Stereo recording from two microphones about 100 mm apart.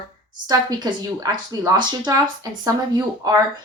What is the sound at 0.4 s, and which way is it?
Speech, 45° right (ahead or behind).